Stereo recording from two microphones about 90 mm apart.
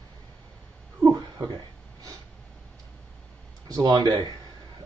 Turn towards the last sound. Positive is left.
turn(degrees=-50)  # may be behind; listen again after turning